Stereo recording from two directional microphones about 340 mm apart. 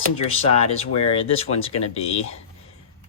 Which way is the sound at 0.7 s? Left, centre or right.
Centre.